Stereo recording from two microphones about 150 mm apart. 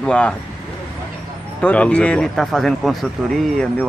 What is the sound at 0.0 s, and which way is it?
Speech, 5° left (ahead or behind).